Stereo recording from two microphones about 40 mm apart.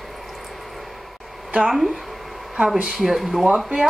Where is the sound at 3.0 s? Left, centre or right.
Centre.